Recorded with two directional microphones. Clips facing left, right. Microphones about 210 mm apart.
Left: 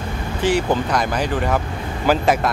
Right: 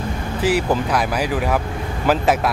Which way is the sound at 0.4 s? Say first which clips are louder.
Even; 5° right (ahead or behind).